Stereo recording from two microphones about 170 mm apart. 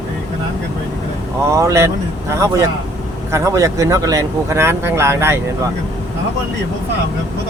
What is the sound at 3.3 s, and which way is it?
Speech, 20° right (ahead or behind).